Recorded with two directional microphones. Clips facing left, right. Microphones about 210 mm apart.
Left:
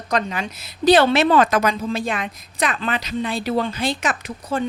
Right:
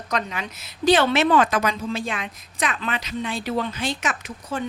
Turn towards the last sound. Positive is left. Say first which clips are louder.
# left 5 dB
turn(degrees=35)  # may be behind; listen again after turning